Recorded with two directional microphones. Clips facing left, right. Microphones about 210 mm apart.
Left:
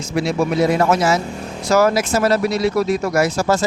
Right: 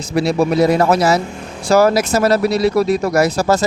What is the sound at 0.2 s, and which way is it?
Speech, 35° right (ahead or behind).